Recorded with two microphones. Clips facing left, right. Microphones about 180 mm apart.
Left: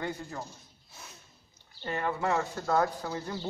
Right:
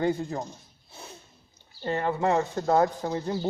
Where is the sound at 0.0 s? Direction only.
30° right (ahead or behind).